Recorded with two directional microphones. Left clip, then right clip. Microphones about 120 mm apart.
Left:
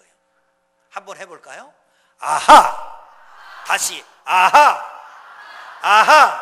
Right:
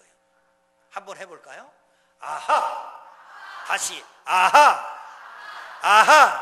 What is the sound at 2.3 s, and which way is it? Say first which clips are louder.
Sigh: left 14 dB; 75° left (ahead or behind).